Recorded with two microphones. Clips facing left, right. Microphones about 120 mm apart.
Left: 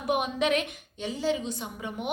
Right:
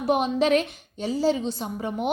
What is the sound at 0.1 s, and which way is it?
A woman's voice, 35° right (ahead or behind).